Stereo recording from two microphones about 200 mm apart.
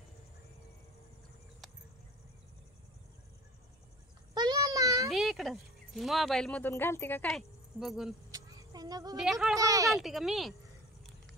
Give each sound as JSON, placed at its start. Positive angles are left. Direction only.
{"t": 4.3, "sound": "a sound", "side_deg": -20}
{"t": 5.1, "sound": "speech", "side_deg": 0}
{"t": 8.3, "sound": "a sound", "side_deg": -15}
{"t": 9.1, "sound": "speech", "side_deg": 0}
{"t": 9.6, "sound": "speech", "side_deg": -15}
{"t": 9.9, "sound": "speech", "side_deg": 0}